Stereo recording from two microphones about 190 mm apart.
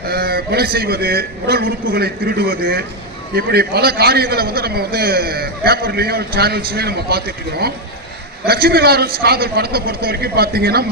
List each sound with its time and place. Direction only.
0.0 s a man's voice: 55° right (ahead or behind)